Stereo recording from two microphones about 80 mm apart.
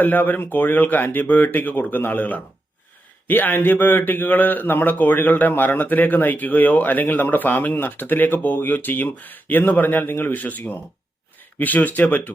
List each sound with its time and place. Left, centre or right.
0.0 s speech: left